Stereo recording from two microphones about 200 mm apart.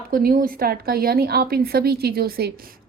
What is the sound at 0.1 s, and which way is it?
A woman's voice, 45° right (ahead or behind).